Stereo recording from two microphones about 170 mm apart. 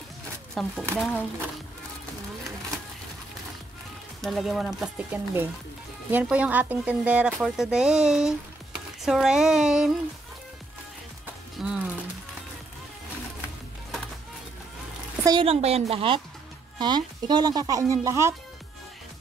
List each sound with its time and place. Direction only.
0.6 s speech: centre (ahead or behind)
4.2 s speech: centre (ahead or behind)
11.6 s speech: 5° right (ahead or behind)
15.2 s a woman's voice: 30° right (ahead or behind)